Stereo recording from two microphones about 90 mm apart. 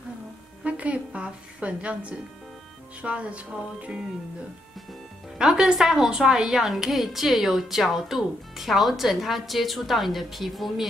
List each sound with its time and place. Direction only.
0.7 s a woman's voice: 15° right (ahead or behind)
5.4 s a woman's voice: 10° right (ahead or behind)